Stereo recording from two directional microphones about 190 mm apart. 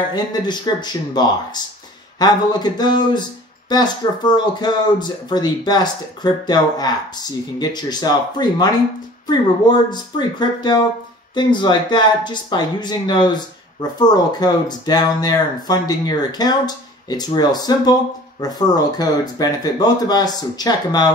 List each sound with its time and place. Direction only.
0.1 s speech: 20° left (ahead or behind)